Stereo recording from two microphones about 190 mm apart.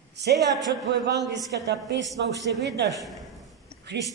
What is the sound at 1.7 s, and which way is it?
Speech, 65° right (ahead or behind).